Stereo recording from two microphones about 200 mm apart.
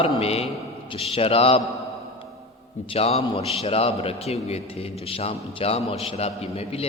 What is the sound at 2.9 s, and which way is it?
A man's voice, 30° left (ahead or behind).